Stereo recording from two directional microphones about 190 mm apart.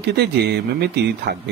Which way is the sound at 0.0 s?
60° right (ahead or behind).